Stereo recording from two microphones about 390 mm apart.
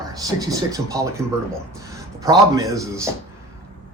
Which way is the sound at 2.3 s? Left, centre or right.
Centre.